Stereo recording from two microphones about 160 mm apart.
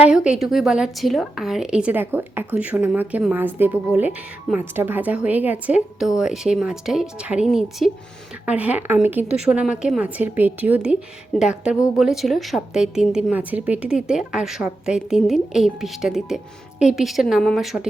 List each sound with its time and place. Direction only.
0.0 s a woman's voice: 5° right (ahead or behind)